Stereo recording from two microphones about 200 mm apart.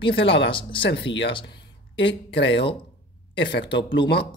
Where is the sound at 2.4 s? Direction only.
60° left (ahead or behind).